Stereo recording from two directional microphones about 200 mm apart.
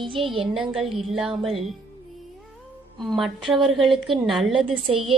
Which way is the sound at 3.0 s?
Centre (ahead or behind).